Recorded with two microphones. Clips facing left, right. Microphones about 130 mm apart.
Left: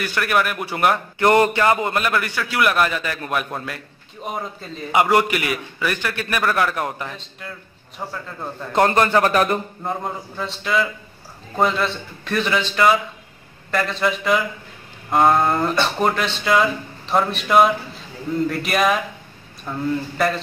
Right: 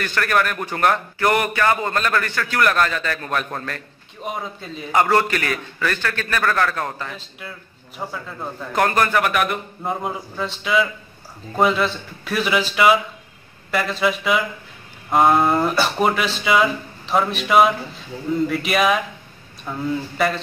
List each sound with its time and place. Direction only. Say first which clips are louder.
0.0 s a man's voice: even; 10° left (ahead or behind)
1.2 s a man's voice: left 4 dB; 25° left (ahead or behind); by 4.8 s centre (ahead or behind)
4.9 s a man's voice: left 1 dB; 10° left (ahead or behind)
8.0 s speech: right 1 dB; 5° right (ahead or behind)
8.7 s a man's voice: left 2 dB; 25° left (ahead or behind)
9.8 s speech: right 3 dB; centre (ahead or behind)